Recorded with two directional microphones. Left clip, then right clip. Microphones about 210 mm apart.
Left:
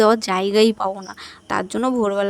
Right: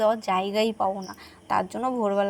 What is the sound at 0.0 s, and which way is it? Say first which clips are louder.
Speech: left 6 dB; 30° left (ahead or behind).